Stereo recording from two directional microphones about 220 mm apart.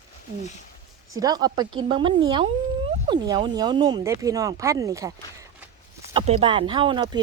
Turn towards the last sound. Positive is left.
turn(degrees=-20)  # may be behind; listen again after turning